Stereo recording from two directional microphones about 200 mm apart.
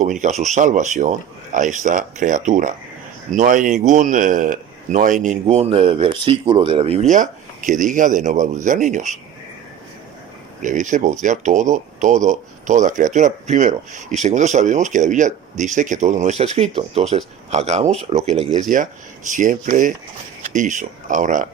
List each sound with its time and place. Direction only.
0.0 s speech: 40° right (ahead or behind)
10.6 s speech: 40° right (ahead or behind)